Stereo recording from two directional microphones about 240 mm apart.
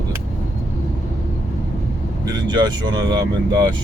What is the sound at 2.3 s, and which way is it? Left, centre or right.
Speech, centre.